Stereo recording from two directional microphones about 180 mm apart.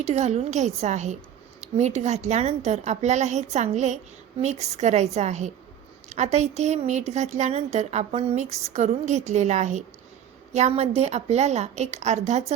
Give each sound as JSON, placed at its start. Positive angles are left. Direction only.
{"t": 0.0, "sound": "a woman's voice", "side_deg": -40}